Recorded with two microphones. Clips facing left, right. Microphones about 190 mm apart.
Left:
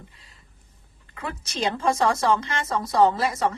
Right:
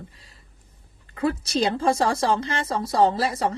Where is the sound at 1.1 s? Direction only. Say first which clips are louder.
Right 10 dB; 35° right (ahead or behind).